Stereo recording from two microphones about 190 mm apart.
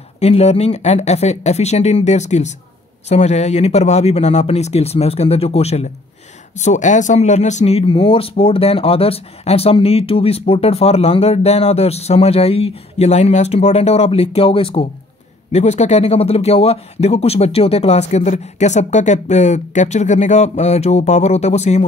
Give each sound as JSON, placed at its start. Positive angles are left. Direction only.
{"t": 0.2, "sound": "speech", "side_deg": 35}